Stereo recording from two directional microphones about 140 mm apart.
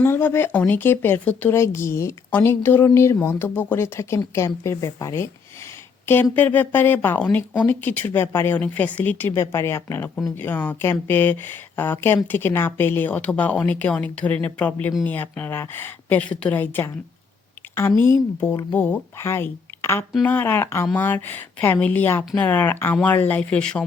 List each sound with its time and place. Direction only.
0.0 s speech: 15° left (ahead or behind)
6.3 s speech: 10° left (ahead or behind)
18.1 s speech: 20° left (ahead or behind)